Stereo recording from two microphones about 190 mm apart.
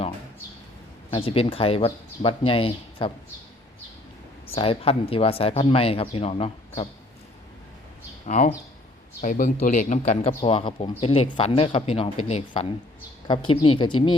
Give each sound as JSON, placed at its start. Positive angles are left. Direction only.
{"t": 1.1, "sound": "speech", "side_deg": 30}
{"t": 4.5, "sound": "speech", "side_deg": 30}
{"t": 8.3, "sound": "speech", "side_deg": 40}